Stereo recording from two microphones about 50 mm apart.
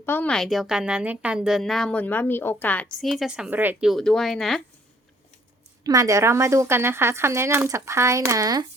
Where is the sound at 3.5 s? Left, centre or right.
Right.